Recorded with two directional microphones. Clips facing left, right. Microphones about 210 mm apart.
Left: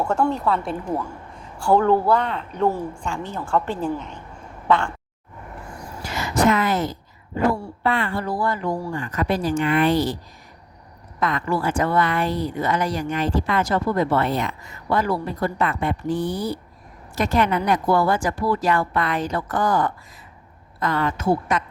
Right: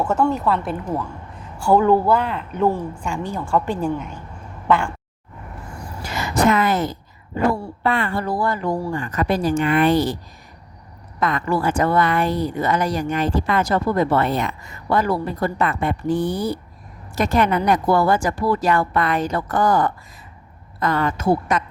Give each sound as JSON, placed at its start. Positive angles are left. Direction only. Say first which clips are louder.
{"t": 0.0, "sound": "a woman's voice", "louder": "right 2 dB", "side_deg": 0}
{"t": 6.4, "sound": "a woman's voice", "louder": "right 2 dB", "side_deg": -55}
{"t": 11.2, "sound": "a woman's voice", "louder": "right 2 dB", "side_deg": -50}